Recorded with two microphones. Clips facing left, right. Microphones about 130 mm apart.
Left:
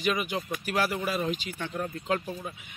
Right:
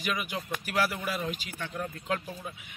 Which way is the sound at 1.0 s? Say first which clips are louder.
Left 4 dB; 40° left (ahead or behind).